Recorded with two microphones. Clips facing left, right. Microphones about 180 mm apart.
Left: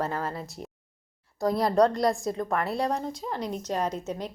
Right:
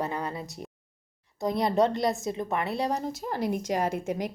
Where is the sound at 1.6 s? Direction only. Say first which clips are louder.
Left 2 dB; 20° right (ahead or behind).